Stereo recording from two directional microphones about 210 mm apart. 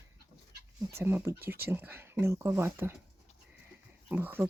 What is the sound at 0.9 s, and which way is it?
Speech, 10° right (ahead or behind).